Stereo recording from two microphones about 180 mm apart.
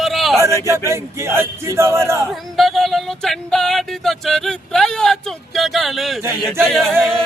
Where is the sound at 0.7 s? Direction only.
15° right (ahead or behind).